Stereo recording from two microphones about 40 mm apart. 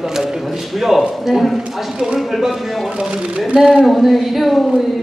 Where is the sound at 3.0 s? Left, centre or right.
Right.